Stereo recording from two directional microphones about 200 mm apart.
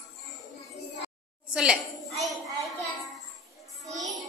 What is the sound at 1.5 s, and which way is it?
Speech, 5° right (ahead or behind).